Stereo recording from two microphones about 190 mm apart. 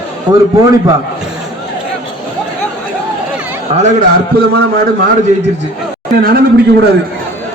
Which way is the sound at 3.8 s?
45° right (ahead or behind).